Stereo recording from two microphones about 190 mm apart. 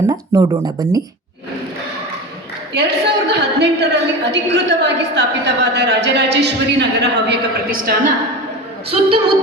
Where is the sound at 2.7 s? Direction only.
60° right (ahead or behind).